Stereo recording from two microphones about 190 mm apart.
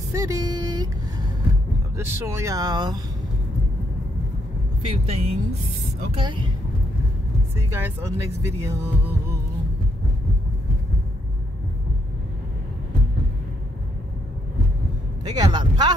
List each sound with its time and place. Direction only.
0.1 s a sound: 20° right (ahead or behind)
2.1 s speech: 15° right (ahead or behind)
4.8 s speech: 35° right (ahead or behind)
7.5 s speech: 15° right (ahead or behind)
15.2 s speech: 20° right (ahead or behind)